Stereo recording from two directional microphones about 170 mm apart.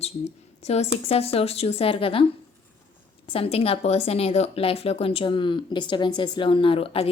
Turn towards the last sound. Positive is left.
turn(degrees=35)  # may be behind; listen again after turning